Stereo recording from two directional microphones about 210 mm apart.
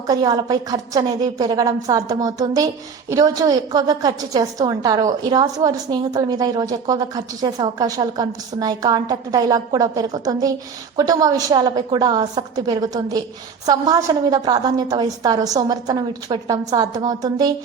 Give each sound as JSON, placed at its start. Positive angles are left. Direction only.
{"t": 0.1, "sound": "a woman's voice", "side_deg": -20}